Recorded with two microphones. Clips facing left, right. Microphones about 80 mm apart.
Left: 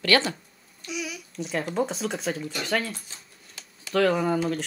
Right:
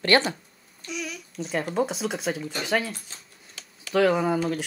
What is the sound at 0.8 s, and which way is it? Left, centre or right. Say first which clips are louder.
Speech: even; centre.